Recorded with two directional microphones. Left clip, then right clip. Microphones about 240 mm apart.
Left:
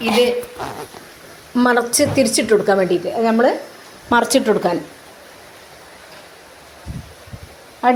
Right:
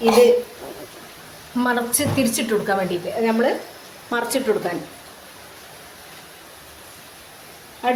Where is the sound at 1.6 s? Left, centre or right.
Left.